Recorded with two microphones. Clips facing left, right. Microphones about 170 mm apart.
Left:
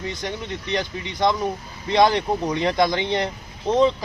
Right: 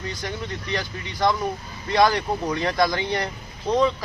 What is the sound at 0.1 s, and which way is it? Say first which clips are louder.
A man's voice: left 2 dB; 20° left (ahead or behind).